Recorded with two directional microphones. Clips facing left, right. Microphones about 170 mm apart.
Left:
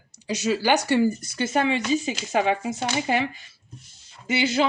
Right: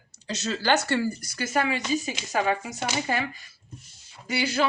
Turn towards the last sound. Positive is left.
turn(degrees=20)  # may be behind; listen again after turning